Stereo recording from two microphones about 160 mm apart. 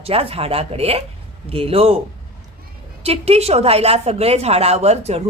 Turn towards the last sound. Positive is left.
turn(degrees=-40)  # may be behind; listen again after turning